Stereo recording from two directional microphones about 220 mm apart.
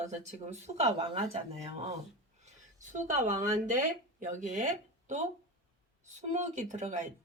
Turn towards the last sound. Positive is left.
turn(degrees=-35)  # may be behind; listen again after turning